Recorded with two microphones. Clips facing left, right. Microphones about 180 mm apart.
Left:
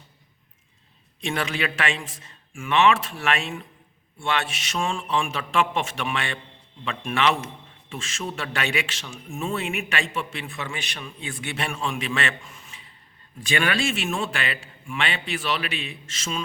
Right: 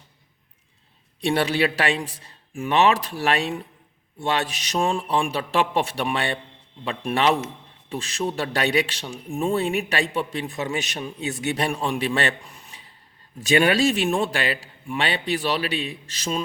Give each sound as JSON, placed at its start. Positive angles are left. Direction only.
{"t": 1.2, "sound": "a man's voice", "side_deg": -35}